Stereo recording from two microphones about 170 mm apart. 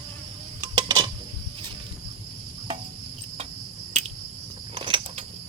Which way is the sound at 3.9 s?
40° right (ahead or behind).